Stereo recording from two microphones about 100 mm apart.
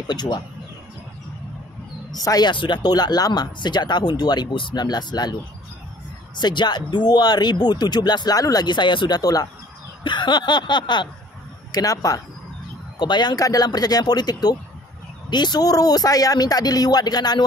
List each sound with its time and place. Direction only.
0.1 s speech: 45° left (ahead or behind)
2.1 s speech: 40° left (ahead or behind)
6.3 s speech: 50° left (ahead or behind)
10.0 s speech: 50° left (ahead or behind)
11.7 s speech: 35° left (ahead or behind)
13.0 s speech: 50° left (ahead or behind)